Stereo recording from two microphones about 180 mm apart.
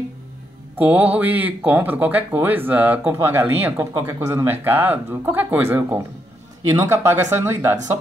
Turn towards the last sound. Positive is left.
turn(degrees=-15)  # may be behind; listen again after turning